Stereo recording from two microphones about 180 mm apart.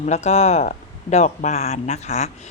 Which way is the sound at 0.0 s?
40° left (ahead or behind).